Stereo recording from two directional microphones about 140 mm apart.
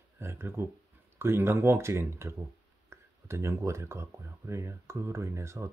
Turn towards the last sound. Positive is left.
turn(degrees=-20)  # may be behind; listen again after turning